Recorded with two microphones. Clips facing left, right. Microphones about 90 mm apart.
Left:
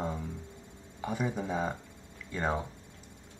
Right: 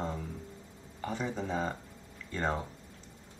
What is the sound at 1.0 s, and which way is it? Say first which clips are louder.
Speech: left 2 dB; 10° left (ahead or behind).